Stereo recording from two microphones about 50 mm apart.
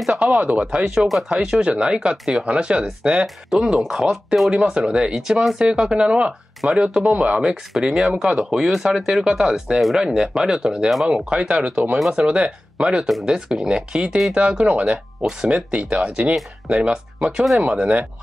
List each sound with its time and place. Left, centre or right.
0.2 s speech: right
3.4 s speech: centre; by 6.3 s right
6.6 s speech: centre
9.8 s speech: centre
11.2 s speech: right
14.3 s speech: right